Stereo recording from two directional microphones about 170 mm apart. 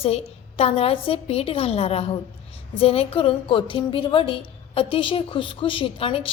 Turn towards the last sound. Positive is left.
turn(degrees=35)  # may be behind; listen again after turning